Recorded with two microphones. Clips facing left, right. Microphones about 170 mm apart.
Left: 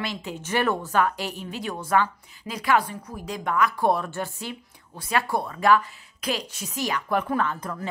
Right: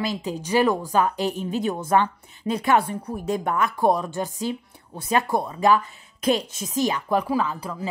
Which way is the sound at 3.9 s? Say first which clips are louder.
Right 3 dB; 15° right (ahead or behind).